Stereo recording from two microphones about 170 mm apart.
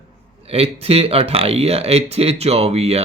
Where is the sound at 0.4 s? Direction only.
35° right (ahead or behind).